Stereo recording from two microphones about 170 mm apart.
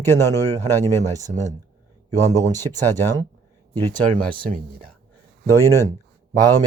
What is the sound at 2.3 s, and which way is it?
Speech, 20° right (ahead or behind).